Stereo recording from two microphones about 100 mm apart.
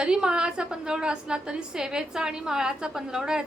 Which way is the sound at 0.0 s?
10° right (ahead or behind).